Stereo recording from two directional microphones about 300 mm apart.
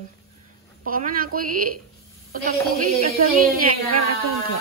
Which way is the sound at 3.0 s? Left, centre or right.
Right.